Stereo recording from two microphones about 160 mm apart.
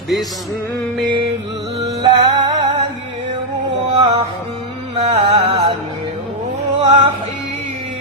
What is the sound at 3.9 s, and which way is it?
Music, 30° right (ahead or behind).